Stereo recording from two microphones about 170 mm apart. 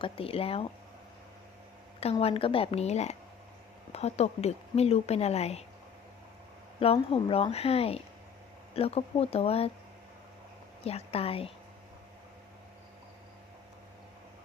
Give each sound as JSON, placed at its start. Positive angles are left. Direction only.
{"t": 0.0, "sound": "speech", "side_deg": 35}
{"t": 2.0, "sound": "speech", "side_deg": 35}
{"t": 6.7, "sound": "speech", "side_deg": 35}
{"t": 10.8, "sound": "speech", "side_deg": 35}